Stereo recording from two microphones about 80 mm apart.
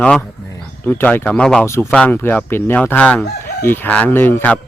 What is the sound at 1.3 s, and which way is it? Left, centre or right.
Speech, centre.